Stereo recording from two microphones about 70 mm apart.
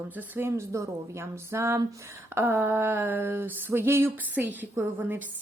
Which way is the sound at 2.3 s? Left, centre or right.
Right.